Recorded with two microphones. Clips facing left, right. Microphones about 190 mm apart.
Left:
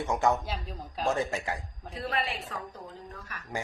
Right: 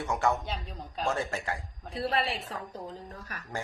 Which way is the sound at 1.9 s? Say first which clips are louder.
Right 3 dB; 30° right (ahead or behind).